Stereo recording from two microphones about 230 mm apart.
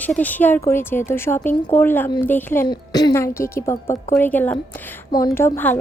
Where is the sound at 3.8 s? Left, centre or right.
Left.